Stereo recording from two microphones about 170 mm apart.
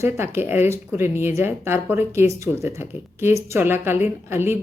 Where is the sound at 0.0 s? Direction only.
15° right (ahead or behind).